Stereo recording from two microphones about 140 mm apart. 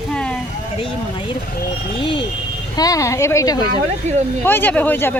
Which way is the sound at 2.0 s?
35° left (ahead or behind).